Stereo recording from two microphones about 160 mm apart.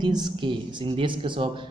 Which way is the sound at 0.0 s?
25° right (ahead or behind).